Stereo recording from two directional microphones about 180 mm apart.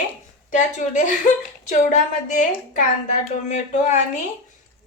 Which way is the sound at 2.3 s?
45° left (ahead or behind).